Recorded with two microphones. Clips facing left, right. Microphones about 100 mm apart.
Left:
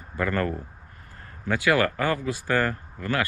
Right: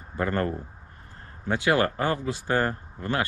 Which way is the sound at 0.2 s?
25° right (ahead or behind).